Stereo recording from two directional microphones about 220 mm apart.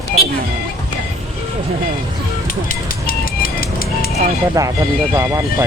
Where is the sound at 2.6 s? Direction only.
40° left (ahead or behind).